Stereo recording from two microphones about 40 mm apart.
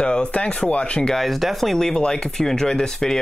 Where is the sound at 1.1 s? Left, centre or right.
Centre.